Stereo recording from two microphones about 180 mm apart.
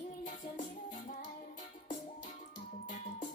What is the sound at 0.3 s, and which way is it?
Music, 45° left (ahead or behind).